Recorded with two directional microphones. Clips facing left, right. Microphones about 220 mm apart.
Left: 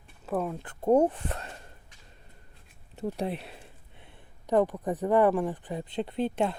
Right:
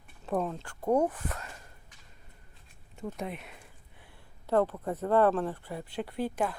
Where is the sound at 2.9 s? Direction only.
35° left (ahead or behind).